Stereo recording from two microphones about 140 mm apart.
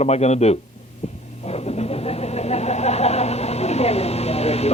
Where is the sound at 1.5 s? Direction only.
50° left (ahead or behind).